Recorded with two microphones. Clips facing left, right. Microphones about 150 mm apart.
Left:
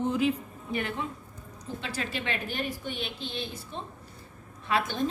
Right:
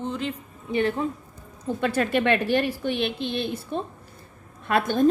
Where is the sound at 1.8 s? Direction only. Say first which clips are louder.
Right 12 dB; 55° right (ahead or behind).